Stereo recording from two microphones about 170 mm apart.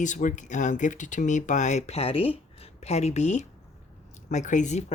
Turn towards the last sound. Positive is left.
turn(degrees=40)  # may be behind; listen again after turning